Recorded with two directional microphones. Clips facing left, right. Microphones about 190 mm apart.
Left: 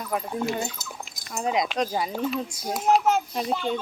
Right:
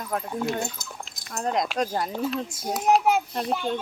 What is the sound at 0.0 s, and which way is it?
Speech, 5° left (ahead or behind).